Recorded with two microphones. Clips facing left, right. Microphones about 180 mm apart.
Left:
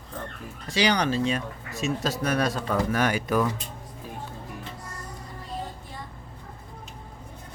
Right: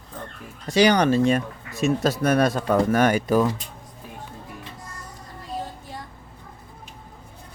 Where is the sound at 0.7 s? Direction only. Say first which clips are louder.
Right 6 dB; 50° right (ahead or behind).